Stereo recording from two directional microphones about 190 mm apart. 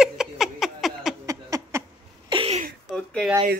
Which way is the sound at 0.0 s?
Centre (ahead or behind).